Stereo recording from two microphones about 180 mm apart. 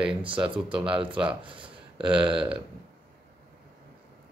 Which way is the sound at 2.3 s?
5° right (ahead or behind).